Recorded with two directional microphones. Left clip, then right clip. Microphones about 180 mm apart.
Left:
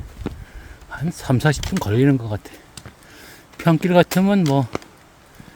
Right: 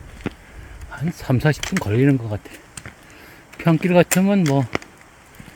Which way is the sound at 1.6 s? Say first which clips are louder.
Right 1 dB; 15° right (ahead or behind).